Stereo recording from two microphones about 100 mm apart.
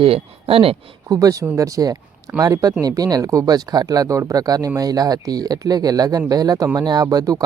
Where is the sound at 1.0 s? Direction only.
35° right (ahead or behind).